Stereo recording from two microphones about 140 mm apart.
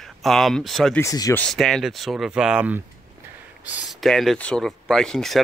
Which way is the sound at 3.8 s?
Centre (ahead or behind).